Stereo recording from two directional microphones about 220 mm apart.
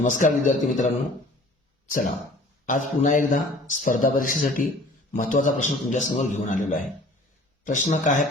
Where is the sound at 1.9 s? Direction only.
40° left (ahead or behind).